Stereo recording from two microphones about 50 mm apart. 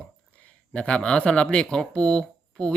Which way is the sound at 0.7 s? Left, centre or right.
Centre.